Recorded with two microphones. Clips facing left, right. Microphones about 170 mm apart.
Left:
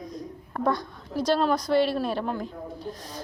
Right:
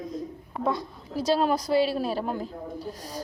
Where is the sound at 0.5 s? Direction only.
5° right (ahead or behind).